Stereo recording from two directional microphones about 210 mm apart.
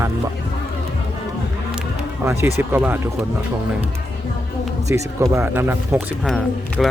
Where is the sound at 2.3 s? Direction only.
10° right (ahead or behind).